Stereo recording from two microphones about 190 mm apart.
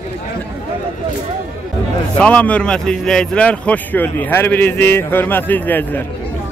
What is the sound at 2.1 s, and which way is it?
A man's voice, 5° left (ahead or behind).